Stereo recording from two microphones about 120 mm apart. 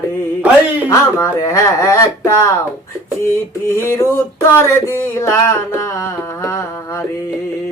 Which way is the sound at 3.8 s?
25° left (ahead or behind).